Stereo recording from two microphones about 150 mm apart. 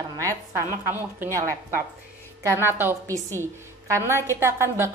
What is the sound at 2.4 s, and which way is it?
A woman's voice, 15° right (ahead or behind).